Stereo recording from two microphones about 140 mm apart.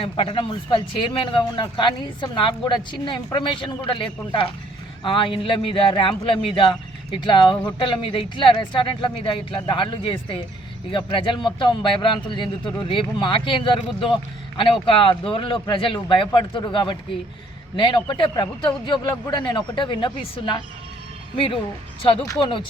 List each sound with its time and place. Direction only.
0.0 s a man's voice: 40° left (ahead or behind)